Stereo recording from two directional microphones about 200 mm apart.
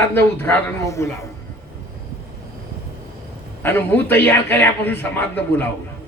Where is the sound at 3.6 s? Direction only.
10° left (ahead or behind).